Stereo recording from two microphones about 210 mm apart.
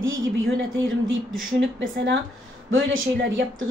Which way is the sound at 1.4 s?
60° right (ahead or behind).